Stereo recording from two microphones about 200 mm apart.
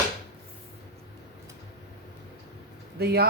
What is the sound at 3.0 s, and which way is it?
Speech, 50° right (ahead or behind).